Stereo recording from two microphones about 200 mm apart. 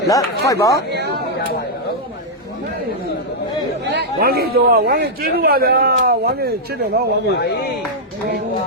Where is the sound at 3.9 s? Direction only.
50° right (ahead or behind).